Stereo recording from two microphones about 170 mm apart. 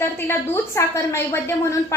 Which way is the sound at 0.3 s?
15° left (ahead or behind).